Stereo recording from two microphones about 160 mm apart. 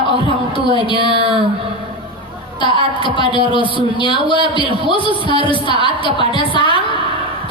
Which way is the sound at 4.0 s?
30° left (ahead or behind).